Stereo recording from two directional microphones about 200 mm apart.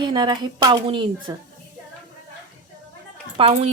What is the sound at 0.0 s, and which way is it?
A woman's voice, 20° right (ahead or behind).